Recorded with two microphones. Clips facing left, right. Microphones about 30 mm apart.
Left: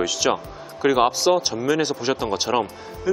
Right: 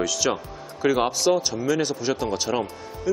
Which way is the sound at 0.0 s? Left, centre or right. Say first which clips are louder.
Left 3 dB; centre.